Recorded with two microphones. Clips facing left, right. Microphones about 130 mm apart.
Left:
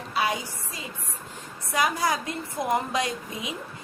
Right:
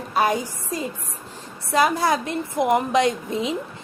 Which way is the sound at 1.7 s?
25° right (ahead or behind).